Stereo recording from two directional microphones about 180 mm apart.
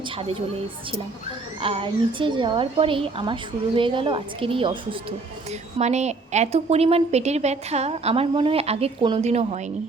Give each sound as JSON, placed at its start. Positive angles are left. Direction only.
{"t": 1.6, "sound": "a woman's voice", "side_deg": -30}
{"t": 5.5, "sound": "a woman's voice", "side_deg": -40}